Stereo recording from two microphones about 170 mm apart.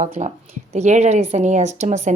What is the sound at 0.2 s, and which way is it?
A woman's voice, 45° right (ahead or behind).